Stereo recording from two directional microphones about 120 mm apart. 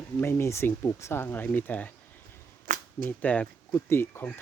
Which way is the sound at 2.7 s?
90° right.